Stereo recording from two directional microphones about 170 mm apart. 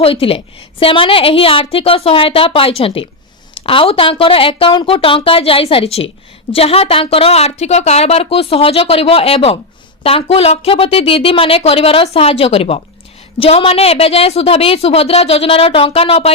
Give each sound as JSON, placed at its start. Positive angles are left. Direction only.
{"t": 0.0, "sound": "a woman's voice", "side_deg": 35}